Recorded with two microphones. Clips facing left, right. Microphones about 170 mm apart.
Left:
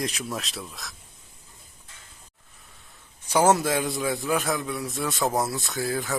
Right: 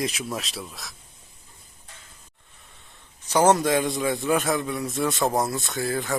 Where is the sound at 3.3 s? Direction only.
10° left (ahead or behind).